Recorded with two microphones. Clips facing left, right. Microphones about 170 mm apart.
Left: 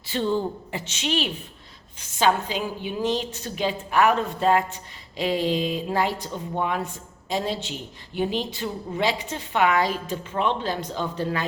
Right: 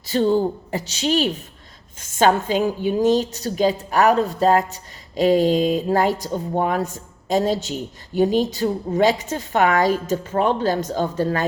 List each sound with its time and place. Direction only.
0.0 s a woman's voice: 40° right (ahead or behind)